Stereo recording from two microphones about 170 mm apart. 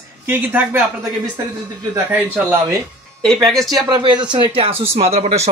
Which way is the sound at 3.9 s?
25° right (ahead or behind).